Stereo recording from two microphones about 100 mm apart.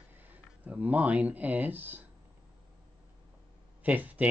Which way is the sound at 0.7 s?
15° right (ahead or behind).